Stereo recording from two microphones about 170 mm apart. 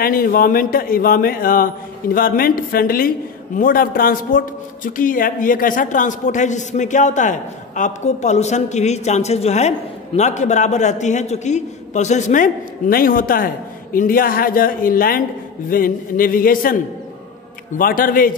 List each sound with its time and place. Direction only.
0.0 s a man's voice: 55° left (ahead or behind)
17.7 s speech: 55° left (ahead or behind)